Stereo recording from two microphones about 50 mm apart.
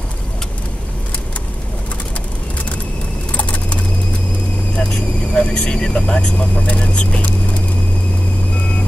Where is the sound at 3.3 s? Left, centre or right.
Left.